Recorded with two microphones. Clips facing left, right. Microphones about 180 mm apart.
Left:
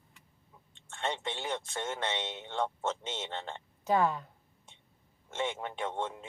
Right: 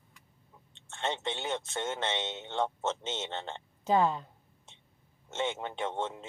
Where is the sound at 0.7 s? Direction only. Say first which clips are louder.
Right 1 dB; 25° right (ahead or behind).